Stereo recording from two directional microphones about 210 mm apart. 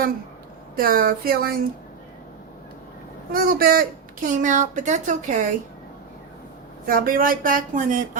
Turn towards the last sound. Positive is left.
turn(degrees=-40)  # may be behind; listen again after turning